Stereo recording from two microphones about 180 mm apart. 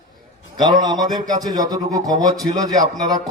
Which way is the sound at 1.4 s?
20° right (ahead or behind).